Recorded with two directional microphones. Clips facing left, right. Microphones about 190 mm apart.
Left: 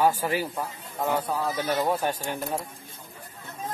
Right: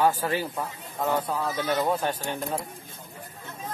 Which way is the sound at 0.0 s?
10° left (ahead or behind).